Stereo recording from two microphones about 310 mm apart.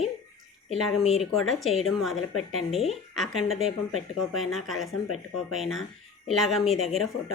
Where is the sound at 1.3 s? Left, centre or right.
Centre.